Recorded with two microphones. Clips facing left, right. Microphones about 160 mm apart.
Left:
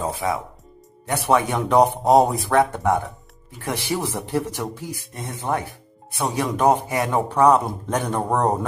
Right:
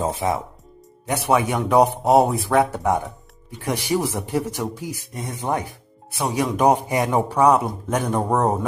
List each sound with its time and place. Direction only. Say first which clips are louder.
0.0 s speech: right 2 dB; 20° right (ahead or behind)
1.0 s speech: even; 10° right (ahead or behind)